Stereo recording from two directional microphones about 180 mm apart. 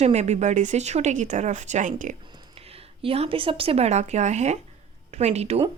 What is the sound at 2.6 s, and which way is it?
A woman's voice, 35° right (ahead or behind).